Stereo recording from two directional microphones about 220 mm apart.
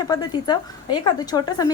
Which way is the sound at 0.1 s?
20° left (ahead or behind).